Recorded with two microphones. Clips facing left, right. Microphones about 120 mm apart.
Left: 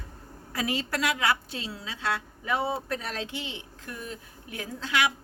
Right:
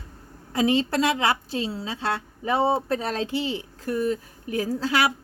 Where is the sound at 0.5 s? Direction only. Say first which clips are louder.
Right 9 dB; 25° right (ahead or behind).